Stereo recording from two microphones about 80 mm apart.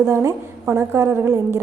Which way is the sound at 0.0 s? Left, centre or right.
Right.